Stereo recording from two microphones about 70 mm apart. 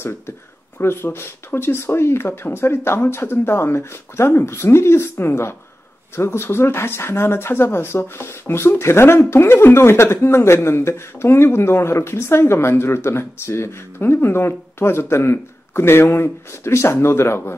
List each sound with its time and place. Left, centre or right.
0.7 s speech: left